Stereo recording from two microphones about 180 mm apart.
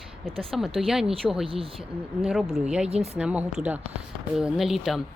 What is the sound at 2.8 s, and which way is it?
Speech, 35° right (ahead or behind).